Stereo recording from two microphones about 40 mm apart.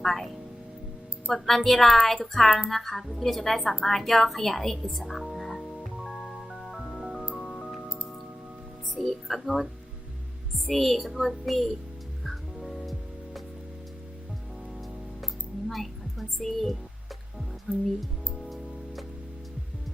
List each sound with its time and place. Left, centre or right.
0.0 s speech: centre
1.3 s a woman's voice: centre
5.0 s music: centre
9.0 s a woman's voice: centre
10.7 s a woman's voice: centre
12.6 s music: centre
15.7 s a woman's voice: centre
17.7 s speech: right
18.4 s music: centre